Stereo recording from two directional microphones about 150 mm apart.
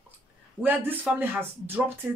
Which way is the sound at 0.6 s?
15° right (ahead or behind).